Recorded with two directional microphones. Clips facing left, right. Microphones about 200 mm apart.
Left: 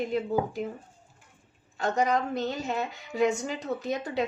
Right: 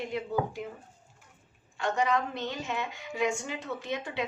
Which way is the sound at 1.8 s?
40° left (ahead or behind).